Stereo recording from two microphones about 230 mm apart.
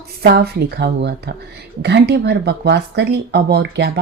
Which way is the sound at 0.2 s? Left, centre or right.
Right.